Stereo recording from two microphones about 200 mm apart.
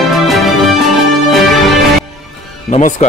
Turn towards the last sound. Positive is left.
turn(degrees=35)  # may be behind; listen again after turning